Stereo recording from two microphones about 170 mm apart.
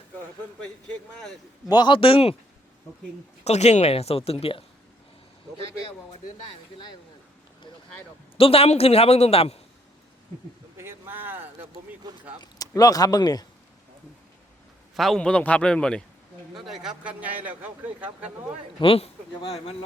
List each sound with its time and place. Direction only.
1.2 s a man's voice: 5° left (ahead or behind)
1.7 s speech: 30° left (ahead or behind)
3.4 s speech: 40° left (ahead or behind)
8.4 s speech: 35° left (ahead or behind)
10.8 s a sound: 15° right (ahead or behind)
12.4 s speech: 20° left (ahead or behind)
14.9 s a man's voice: centre (ahead or behind)
18.8 s speech: 30° left (ahead or behind)